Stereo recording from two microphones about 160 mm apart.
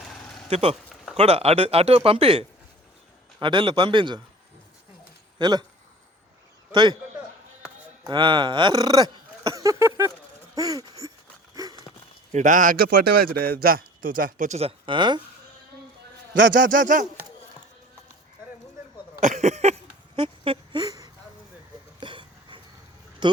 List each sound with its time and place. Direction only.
0.0 s a sound: 5° left (ahead or behind)
0.5 s speech: 40° right (ahead or behind)
5.4 s a man's voice: 25° right (ahead or behind)
8.0 s speech: 30° right (ahead or behind)
9.5 s a sound: 20° right (ahead or behind)
11.5 s horse: 25° right (ahead or behind)
12.3 s a man's voice: 50° right (ahead or behind)
14.8 s speech: 30° right (ahead or behind)
16.4 s a man's voice: 55° right (ahead or behind)
19.2 s a sound: 45° right (ahead or behind); by 22.6 s 30° right (ahead or behind)
23.2 s a man's voice: 30° right (ahead or behind)